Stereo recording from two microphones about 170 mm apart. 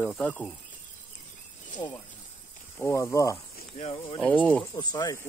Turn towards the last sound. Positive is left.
turn(degrees=20)  # may be behind; listen again after turning